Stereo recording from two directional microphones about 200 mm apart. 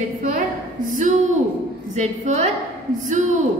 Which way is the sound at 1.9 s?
35° right (ahead or behind).